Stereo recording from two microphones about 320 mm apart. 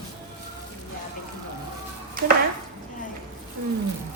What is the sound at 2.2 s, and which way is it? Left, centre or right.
Speech, right.